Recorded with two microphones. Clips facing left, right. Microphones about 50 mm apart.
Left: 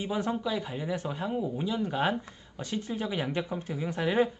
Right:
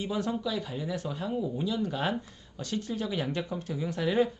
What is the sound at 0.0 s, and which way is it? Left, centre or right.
Speech, left.